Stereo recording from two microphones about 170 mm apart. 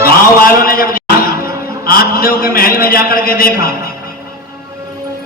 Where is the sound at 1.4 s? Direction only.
15° right (ahead or behind).